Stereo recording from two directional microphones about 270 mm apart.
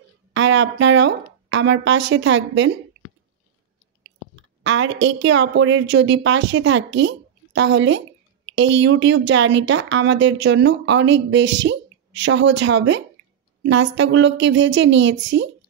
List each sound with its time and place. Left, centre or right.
0.3 s a woman's voice: right
4.0 s speech: right